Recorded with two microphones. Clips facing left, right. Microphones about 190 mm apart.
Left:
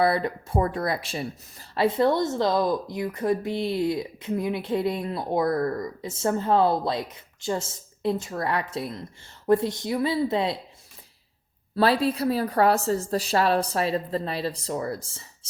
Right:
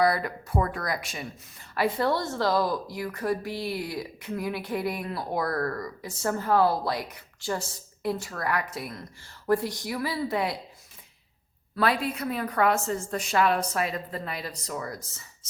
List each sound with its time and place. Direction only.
0.0 s a woman's voice: 25° left (ahead or behind)
11.8 s a woman's voice: 30° left (ahead or behind)